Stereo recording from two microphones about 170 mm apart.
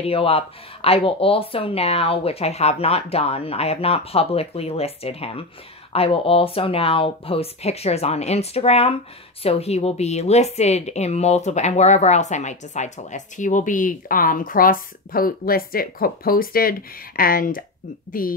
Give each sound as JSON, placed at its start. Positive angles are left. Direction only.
{"t": 0.0, "sound": "a woman's voice", "side_deg": 35}